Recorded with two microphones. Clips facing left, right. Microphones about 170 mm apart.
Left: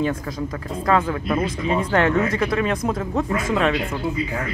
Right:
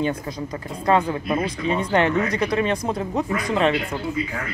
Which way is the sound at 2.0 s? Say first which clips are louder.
Left 1 dB; centre (ahead or behind).